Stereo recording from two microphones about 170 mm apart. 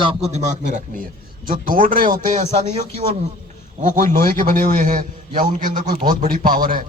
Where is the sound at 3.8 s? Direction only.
50° right (ahead or behind).